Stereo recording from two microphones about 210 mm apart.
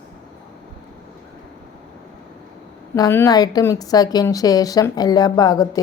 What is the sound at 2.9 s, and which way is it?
A woman's voice, 15° left (ahead or behind).